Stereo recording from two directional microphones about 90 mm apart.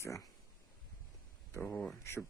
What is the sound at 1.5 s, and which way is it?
Speech, 25° left (ahead or behind).